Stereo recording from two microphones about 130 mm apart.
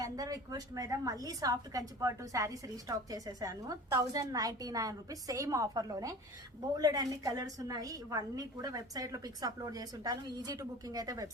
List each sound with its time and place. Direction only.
0.0 s a woman's voice: 25° right (ahead or behind)